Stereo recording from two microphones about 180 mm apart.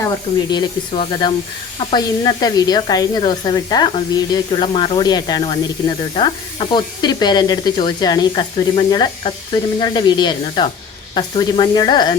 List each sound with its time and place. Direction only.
0.5 s speech: 25° left (ahead or behind)